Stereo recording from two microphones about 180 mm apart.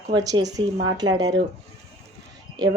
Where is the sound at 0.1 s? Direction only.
20° right (ahead or behind).